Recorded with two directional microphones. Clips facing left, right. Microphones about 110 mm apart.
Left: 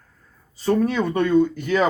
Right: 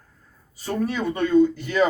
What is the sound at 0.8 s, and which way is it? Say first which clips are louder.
Speech: left 3 dB; 50° left (ahead or behind).